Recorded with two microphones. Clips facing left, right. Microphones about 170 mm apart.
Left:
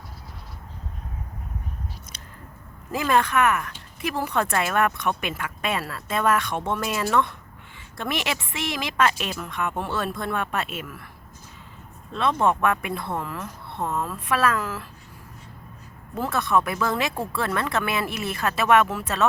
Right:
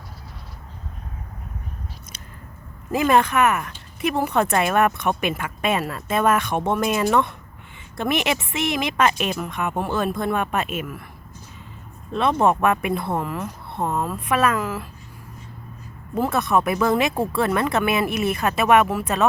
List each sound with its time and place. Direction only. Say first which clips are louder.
2.9 s speech: right 4 dB; 20° right (ahead or behind)
12.1 s speech: right 3 dB; 20° right (ahead or behind)
16.1 s speech: right 3 dB; 15° right (ahead or behind)